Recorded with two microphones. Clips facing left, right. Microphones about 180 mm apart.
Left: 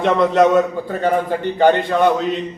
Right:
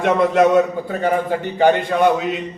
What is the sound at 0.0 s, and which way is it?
A man's voice, 10° right (ahead or behind).